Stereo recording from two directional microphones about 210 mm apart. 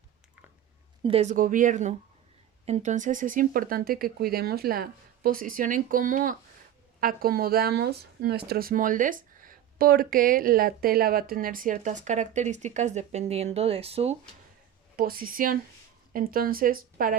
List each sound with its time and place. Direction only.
1.0 s speech: 30° right (ahead or behind)
14.9 s speech: 45° right (ahead or behind)